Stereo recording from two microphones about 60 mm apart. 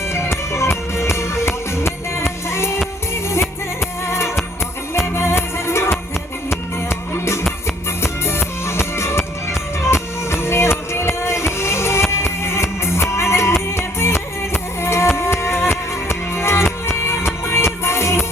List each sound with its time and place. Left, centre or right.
0.1 s music: left
4.0 s music: left
8.0 s music: left